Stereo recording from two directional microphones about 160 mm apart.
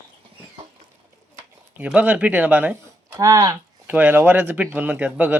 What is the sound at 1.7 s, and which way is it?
Speech, 10° right (ahead or behind).